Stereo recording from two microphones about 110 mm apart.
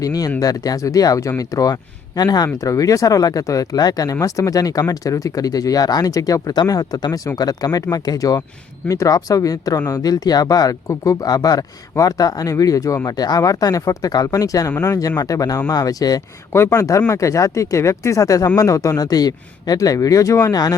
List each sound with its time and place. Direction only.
0.0 s speech: 35° left (ahead or behind)